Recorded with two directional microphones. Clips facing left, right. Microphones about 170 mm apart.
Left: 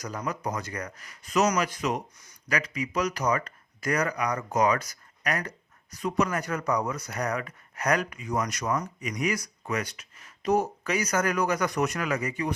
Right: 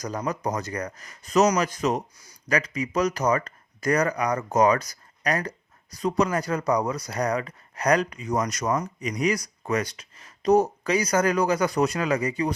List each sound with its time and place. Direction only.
0.0 s speech: 40° right (ahead or behind)